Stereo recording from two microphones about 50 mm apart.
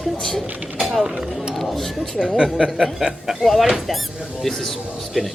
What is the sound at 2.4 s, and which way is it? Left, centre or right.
Speech, centre.